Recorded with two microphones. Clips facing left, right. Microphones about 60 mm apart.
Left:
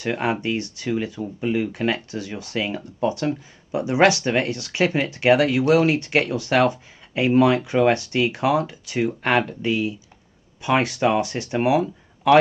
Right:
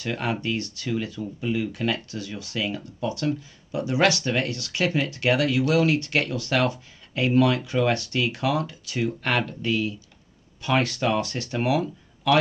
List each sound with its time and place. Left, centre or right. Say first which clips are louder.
0.0 s speech: left 4 dB; left